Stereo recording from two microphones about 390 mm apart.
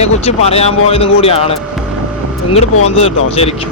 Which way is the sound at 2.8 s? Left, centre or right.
Centre.